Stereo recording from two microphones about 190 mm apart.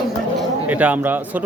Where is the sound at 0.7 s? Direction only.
10° right (ahead or behind).